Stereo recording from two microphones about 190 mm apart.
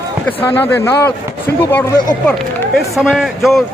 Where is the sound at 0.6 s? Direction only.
15° left (ahead or behind).